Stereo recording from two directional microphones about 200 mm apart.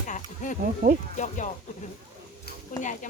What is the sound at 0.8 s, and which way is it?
Speech, 45° right (ahead or behind).